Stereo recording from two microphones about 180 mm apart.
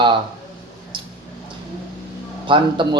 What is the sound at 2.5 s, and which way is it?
Speech, 25° right (ahead or behind).